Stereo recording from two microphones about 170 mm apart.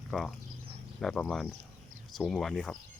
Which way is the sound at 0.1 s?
Centre (ahead or behind).